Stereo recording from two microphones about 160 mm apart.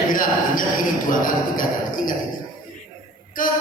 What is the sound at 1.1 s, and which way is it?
Speech, 60° left (ahead or behind).